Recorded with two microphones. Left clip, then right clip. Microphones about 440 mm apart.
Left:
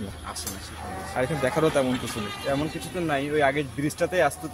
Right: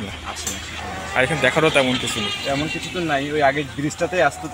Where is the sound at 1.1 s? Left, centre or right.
Left.